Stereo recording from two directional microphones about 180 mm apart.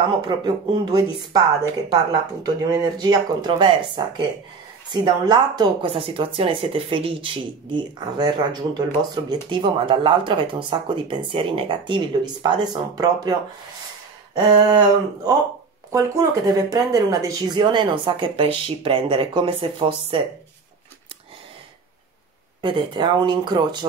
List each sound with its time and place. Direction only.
0.8 s speech: 20° right (ahead or behind)
14.3 s speech: 20° right (ahead or behind)
22.6 s speech: 25° right (ahead or behind)